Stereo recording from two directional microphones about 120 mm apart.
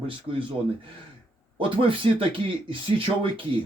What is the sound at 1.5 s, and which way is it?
Speech, 45° right (ahead or behind).